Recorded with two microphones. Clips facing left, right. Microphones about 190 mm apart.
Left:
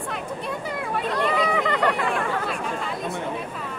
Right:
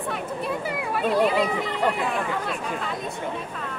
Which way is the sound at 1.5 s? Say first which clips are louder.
Left 2 dB; 70° left (ahead or behind).